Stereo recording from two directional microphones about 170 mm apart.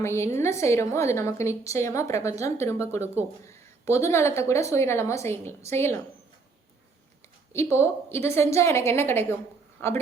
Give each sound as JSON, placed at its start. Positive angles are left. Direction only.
{"t": 0.0, "sound": "speech", "side_deg": 15}
{"t": 7.5, "sound": "speech", "side_deg": 15}